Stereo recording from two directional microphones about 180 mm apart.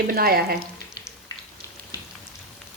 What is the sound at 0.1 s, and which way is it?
Speech, 55° right (ahead or behind).